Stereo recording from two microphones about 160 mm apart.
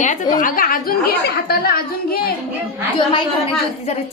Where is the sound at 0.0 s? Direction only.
55° left (ahead or behind); by 2.3 s 70° left (ahead or behind).